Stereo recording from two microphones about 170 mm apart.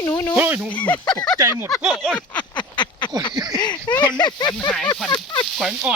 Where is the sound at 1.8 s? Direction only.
5° right (ahead or behind).